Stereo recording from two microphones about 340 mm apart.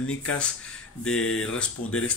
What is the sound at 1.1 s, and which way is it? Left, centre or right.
Speech, left.